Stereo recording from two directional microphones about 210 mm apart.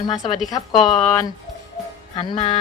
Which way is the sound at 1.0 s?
15° left (ahead or behind).